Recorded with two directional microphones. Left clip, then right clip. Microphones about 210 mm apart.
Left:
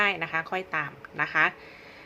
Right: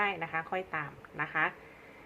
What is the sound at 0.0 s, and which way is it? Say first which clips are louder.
Speech: left 6 dB; 15° left (ahead or behind).